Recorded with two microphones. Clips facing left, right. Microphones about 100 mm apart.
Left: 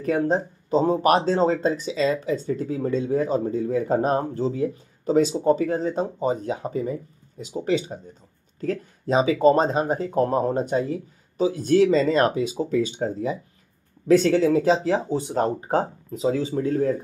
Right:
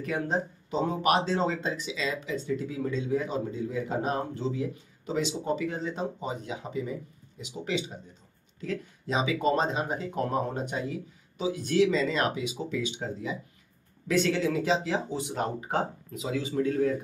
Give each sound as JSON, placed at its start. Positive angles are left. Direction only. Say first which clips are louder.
{"t": 0.0, "sound": "speech", "louder": "left 7 dB", "side_deg": 40}